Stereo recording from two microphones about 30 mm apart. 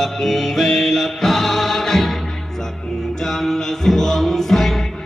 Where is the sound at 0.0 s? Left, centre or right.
Centre.